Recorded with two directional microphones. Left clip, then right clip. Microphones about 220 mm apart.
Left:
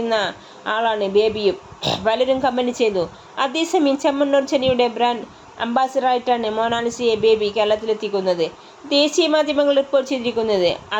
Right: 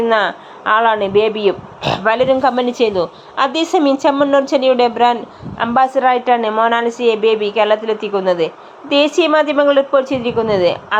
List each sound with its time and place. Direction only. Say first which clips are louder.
0.0 s a woman's voice: right 6 dB; 5° right (ahead or behind)